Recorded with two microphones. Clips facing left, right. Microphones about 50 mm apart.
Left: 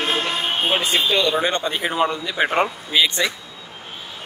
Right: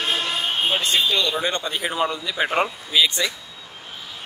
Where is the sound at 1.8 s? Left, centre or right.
Left.